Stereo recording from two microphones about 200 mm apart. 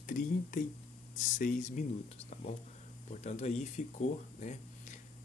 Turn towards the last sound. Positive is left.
turn(degrees=35)  # may be behind; listen again after turning